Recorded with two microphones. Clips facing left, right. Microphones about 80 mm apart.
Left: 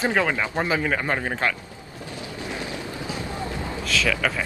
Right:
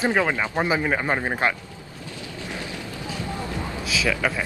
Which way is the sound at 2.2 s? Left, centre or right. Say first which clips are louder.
Left 2 dB; left.